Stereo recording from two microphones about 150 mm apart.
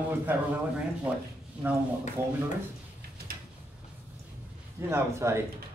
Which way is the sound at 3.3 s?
80° right.